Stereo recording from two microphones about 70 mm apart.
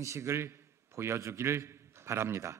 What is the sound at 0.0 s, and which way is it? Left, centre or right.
A man's voice, right.